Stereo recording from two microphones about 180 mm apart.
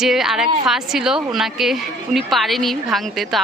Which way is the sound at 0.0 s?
Centre (ahead or behind).